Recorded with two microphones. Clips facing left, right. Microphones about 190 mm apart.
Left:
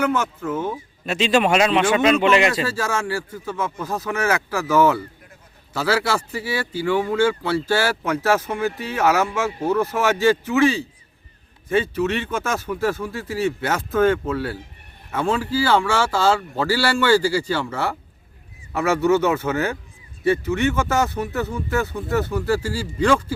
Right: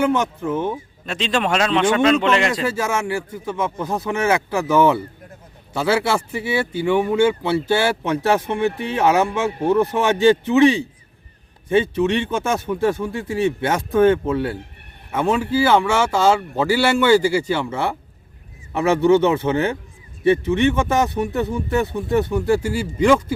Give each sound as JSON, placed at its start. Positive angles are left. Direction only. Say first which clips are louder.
{"t": 0.0, "sound": "speech", "louder": "right 3 dB", "side_deg": -20}
{"t": 1.0, "sound": "speech", "louder": "left 3 dB", "side_deg": 5}
{"t": 2.8, "sound": "speech", "louder": "right 2 dB", "side_deg": -20}